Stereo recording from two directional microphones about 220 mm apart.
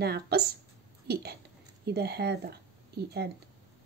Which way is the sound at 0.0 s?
45° right (ahead or behind).